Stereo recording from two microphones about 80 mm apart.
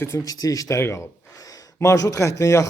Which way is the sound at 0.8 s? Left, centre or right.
Left.